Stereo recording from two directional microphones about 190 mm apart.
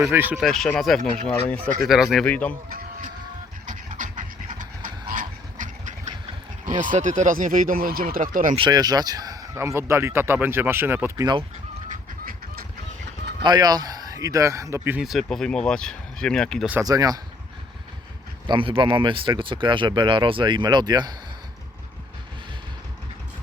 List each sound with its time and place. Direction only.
0.0 s a man's voice: 10° right (ahead or behind)
0.4 s speech: centre (ahead or behind)
2.6 s chicken: 50° right (ahead or behind)
3.7 s vehicle: 45° right (ahead or behind)
6.7 s speech: 45° right (ahead or behind)
8.5 s a man's voice: 20° right (ahead or behind)
12.2 s fowl: 50° right (ahead or behind)
13.4 s a man's voice: 20° right (ahead or behind); by 16.6 s 5° left (ahead or behind)
16.8 s speech: 20° right (ahead or behind)
18.4 s speech: 25° right (ahead or behind)